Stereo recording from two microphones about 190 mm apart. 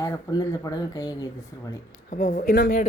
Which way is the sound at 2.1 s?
45° left (ahead or behind).